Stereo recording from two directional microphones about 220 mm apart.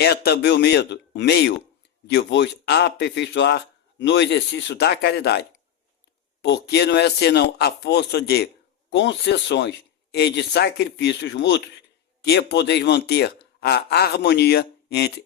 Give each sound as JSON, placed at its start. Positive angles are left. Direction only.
{"t": 0.0, "sound": "speech", "side_deg": 50}